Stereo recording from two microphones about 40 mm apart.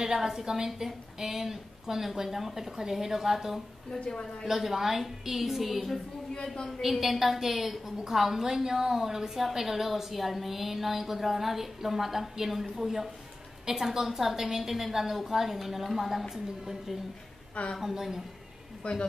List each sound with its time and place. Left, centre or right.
0.0 s a woman's voice: centre
4.1 s a woman's voice: left
4.5 s a woman's voice: centre
6.3 s a woman's voice: left
6.8 s a woman's voice: centre
18.8 s speech: left